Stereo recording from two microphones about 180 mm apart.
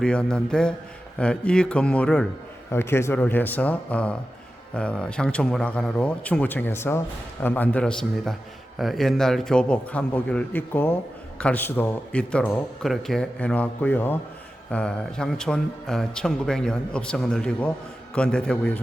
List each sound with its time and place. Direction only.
0.0 s speech: 5° left (ahead or behind)